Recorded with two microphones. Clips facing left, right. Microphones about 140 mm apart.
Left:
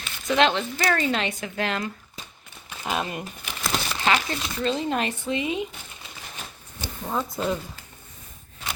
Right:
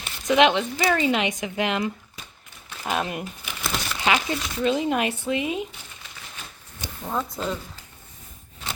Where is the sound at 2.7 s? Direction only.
5° left (ahead or behind).